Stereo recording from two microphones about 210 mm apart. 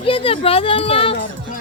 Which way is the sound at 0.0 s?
25° left (ahead or behind).